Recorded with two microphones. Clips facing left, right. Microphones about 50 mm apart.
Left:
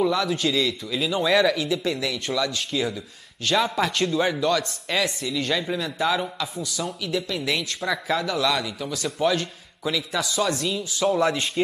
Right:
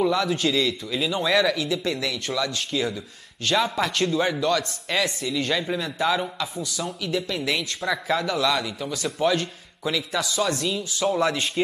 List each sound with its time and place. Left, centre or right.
0.0 s speech: centre